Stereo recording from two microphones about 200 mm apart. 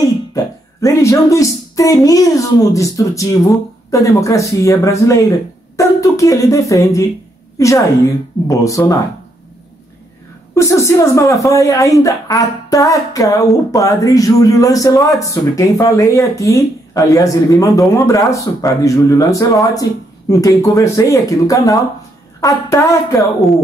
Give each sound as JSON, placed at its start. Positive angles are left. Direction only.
{"t": 0.3, "sound": "speech", "side_deg": 15}
{"t": 10.5, "sound": "speech", "side_deg": 15}
{"t": 23.4, "sound": "a woman's voice", "side_deg": 0}